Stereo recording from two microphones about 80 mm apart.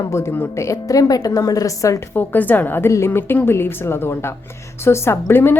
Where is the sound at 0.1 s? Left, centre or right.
Left.